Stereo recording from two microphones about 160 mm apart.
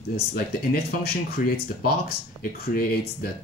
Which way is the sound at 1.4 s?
60° left (ahead or behind).